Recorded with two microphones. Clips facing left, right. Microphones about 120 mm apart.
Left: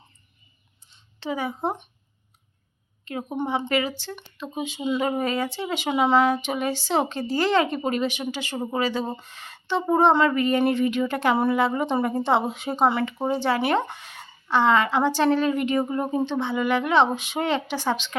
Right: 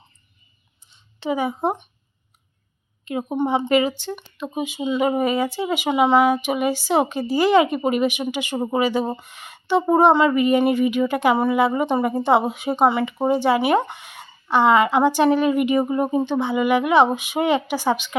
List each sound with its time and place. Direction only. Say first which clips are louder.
1.2 s a woman's voice: right 5 dB; 15° right (ahead or behind)
3.0 s a woman's voice: right 6 dB; 15° right (ahead or behind)
5.9 s speech: right 3 dB; centre (ahead or behind)
6.1 s a woman's voice: right 3 dB; 10° right (ahead or behind)